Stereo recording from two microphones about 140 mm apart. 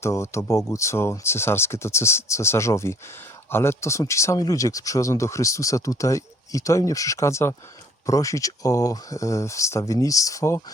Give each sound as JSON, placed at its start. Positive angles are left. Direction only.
{"t": 0.0, "sound": "speech", "side_deg": 20}